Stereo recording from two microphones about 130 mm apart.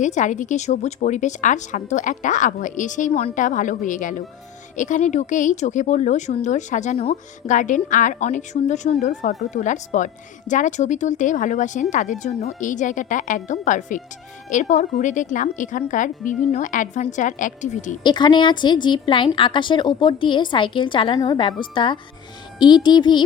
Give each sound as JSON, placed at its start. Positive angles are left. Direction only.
{"t": 0.0, "sound": "speech", "side_deg": 70}
{"t": 18.0, "sound": "a woman's voice", "side_deg": 35}